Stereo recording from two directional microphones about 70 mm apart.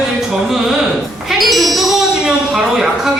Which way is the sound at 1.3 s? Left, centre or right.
Centre.